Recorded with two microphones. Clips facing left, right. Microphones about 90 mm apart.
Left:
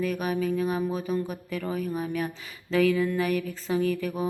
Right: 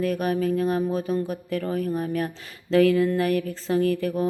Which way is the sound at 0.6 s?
10° left (ahead or behind).